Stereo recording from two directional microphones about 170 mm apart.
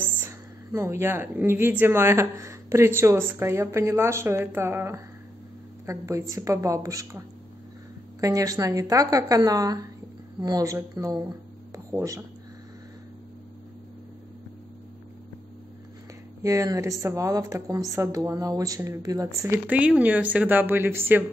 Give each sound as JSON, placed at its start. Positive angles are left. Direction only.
{"t": 0.0, "sound": "a woman's voice", "side_deg": -15}
{"t": 11.7, "sound": "a sound", "side_deg": -20}
{"t": 16.4, "sound": "a woman's voice", "side_deg": -20}